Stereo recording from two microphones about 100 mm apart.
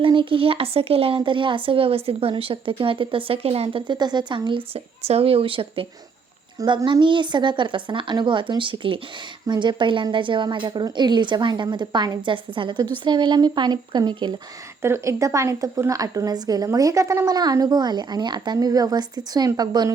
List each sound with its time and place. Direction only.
0.0 s speech: 60° right (ahead or behind)
6.8 s a woman's voice: 55° right (ahead or behind)
12.3 s a woman's voice: 55° right (ahead or behind)
14.8 s speech: 25° right (ahead or behind); by 19.9 s 45° right (ahead or behind)